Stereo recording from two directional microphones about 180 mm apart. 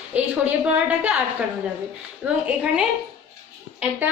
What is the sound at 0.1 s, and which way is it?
A woman's voice, 10° right (ahead or behind).